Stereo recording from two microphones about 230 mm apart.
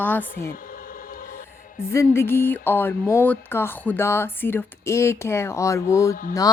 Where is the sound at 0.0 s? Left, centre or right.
Centre.